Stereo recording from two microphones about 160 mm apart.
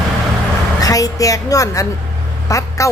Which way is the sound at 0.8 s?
20° left (ahead or behind).